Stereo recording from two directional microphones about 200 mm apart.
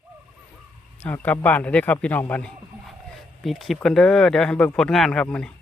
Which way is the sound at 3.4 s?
Centre (ahead or behind).